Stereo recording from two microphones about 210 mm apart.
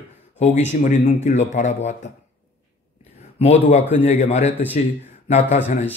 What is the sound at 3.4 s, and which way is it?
Speech, 30° left (ahead or behind).